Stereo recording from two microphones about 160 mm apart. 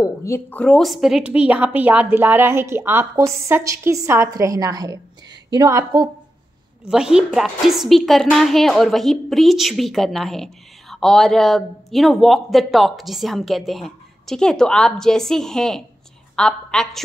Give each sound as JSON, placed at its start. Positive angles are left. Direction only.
{"t": 0.0, "sound": "a woman's voice", "side_deg": 15}
{"t": 6.9, "sound": "a woman's voice", "side_deg": -5}
{"t": 16.3, "sound": "a sound", "side_deg": 5}